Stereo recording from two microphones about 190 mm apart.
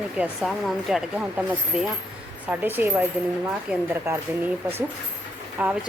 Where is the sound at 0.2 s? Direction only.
Centre (ahead or behind).